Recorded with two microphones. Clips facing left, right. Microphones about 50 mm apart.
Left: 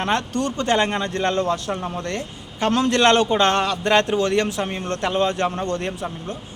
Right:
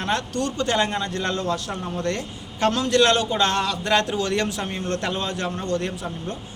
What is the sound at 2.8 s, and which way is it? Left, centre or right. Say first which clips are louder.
A man's voice: left 3 dB; left.